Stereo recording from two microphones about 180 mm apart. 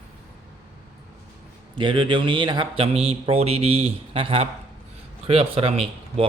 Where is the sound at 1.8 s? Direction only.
25° right (ahead or behind).